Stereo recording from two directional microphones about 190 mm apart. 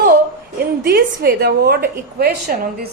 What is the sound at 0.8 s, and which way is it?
A woman's voice, 55° right (ahead or behind).